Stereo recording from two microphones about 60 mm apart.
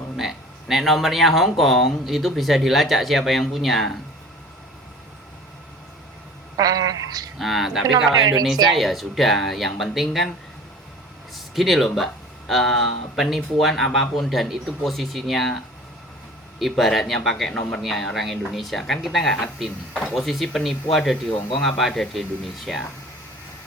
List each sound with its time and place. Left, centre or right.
0.2 s speech: centre
6.6 s a woman's voice: right
7.3 s speech: centre
11.3 s a sound: centre
12.5 s speech: centre
16.6 s speech: centre